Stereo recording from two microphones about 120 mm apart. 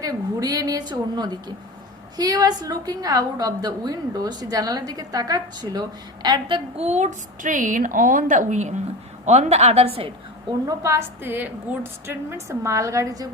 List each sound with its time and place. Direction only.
0.0 s a woman's voice: 30° right (ahead or behind)
6.7 s a woman's voice: 70° right (ahead or behind)
9.2 s a woman's voice: 65° right (ahead or behind)
10.7 s a woman's voice: 25° right (ahead or behind)